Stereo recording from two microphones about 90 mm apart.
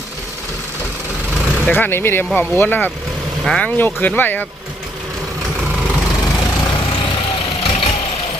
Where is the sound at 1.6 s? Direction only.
20° left (ahead or behind).